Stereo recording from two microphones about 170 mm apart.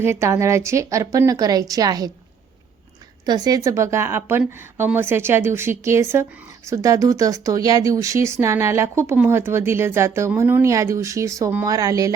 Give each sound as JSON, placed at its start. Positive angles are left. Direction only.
{"t": 0.0, "sound": "a woman's voice", "side_deg": -15}
{"t": 3.2, "sound": "speech", "side_deg": -25}